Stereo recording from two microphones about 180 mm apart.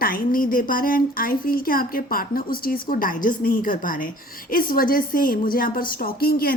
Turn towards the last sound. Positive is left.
turn(degrees=55)  # may be behind; listen again after turning